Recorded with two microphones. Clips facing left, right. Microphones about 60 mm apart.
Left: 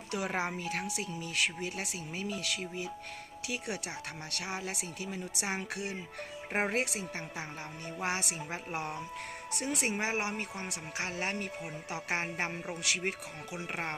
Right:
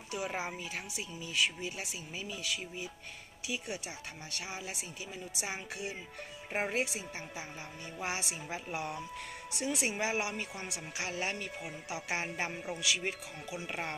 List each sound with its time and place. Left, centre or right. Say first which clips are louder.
0.1 s a woman's voice: left 3 dB; left